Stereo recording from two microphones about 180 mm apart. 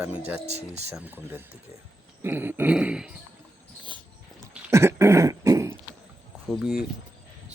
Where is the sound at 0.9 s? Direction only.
10° right (ahead or behind).